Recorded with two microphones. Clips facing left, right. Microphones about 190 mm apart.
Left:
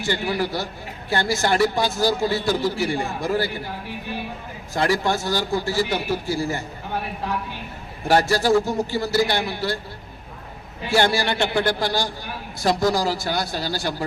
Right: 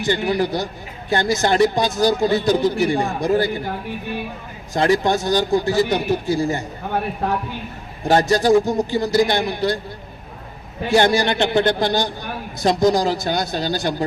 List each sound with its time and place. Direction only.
0.0 s a man's voice: 20° right (ahead or behind)
4.7 s speech: 20° right (ahead or behind)
6.9 s speech: 55° right (ahead or behind)
8.0 s speech: 20° right (ahead or behind)
10.8 s a man's voice: 20° right (ahead or behind)